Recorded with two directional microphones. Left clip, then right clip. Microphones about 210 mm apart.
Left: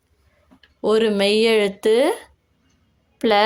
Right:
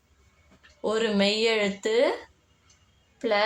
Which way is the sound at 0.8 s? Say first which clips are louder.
Left 7 dB; 50° left (ahead or behind).